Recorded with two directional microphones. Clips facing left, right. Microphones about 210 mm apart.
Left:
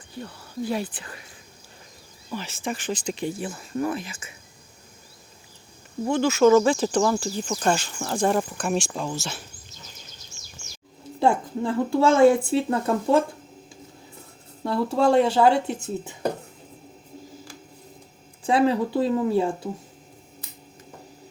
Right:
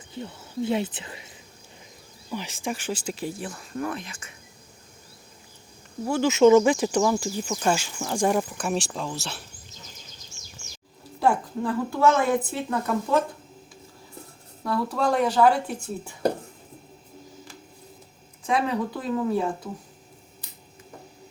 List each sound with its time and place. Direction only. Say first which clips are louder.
0.2 s speech: right 2 dB; 20° right (ahead or behind)
2.3 s speech: even; 15° right (ahead or behind); by 4.4 s 5° left (ahead or behind)
6.1 s speech: left 1 dB; 10° right (ahead or behind)
6.3 s speech: right 1 dB; 20° right (ahead or behind); by 9.1 s centre (ahead or behind)
11.2 s a woman's voice: left 2 dB; 25° left (ahead or behind)
14.6 s a woman's voice: left 4 dB; 25° left (ahead or behind)
18.4 s a woman's voice: left 5 dB; 30° left (ahead or behind)